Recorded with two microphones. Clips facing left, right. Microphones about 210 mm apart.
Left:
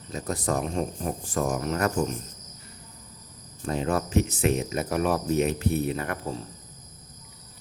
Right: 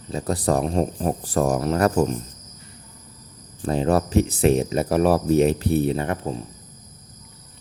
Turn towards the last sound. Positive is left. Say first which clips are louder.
# right 5 dB
turn(degrees=-25)  # may be behind; listen again after turning